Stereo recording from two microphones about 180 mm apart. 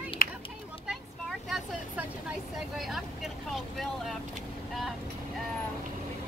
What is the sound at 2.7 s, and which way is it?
Speech, centre (ahead or behind).